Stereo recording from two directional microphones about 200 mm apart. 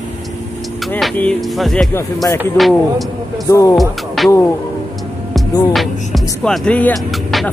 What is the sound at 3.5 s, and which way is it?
Speech, 15° left (ahead or behind).